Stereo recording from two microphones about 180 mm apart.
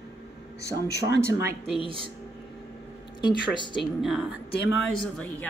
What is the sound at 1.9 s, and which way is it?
Speech, 30° right (ahead or behind).